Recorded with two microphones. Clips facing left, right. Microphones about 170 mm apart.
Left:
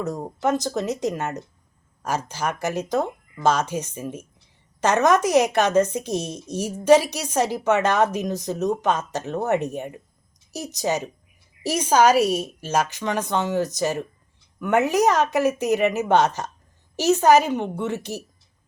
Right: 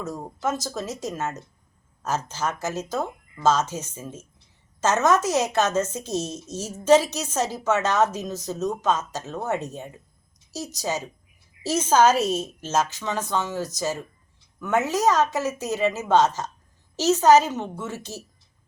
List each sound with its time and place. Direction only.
0.0 s a woman's voice: 20° left (ahead or behind)